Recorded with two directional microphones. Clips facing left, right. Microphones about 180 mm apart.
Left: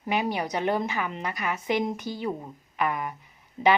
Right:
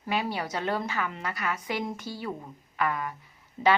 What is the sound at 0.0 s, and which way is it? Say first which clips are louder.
A woman's voice: left 3 dB; 15° left (ahead or behind).